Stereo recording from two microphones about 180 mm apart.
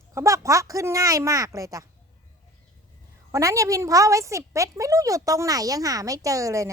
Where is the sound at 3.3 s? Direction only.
15° right (ahead or behind).